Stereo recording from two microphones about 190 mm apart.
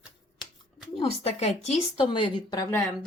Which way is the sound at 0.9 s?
30° left (ahead or behind).